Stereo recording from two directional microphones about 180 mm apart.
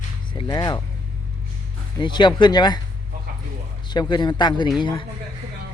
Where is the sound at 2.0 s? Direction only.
25° left (ahead or behind).